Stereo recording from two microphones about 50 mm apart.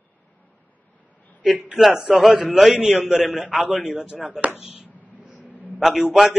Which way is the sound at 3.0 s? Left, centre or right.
Centre.